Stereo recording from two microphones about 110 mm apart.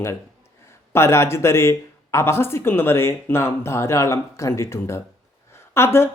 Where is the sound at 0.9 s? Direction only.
25° left (ahead or behind).